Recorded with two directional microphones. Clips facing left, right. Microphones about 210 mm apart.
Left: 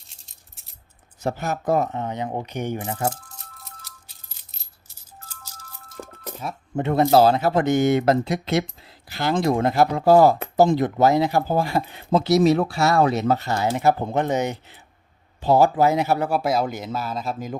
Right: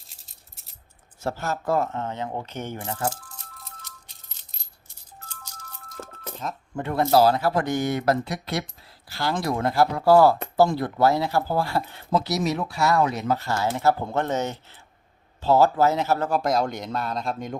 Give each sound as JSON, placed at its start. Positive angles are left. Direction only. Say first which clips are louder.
{"t": 1.2, "sound": "speech", "louder": "left 3 dB", "side_deg": 15}
{"t": 6.0, "sound": "music", "louder": "left 1 dB", "side_deg": 10}
{"t": 6.7, "sound": "speech", "louder": "left 3 dB", "side_deg": 20}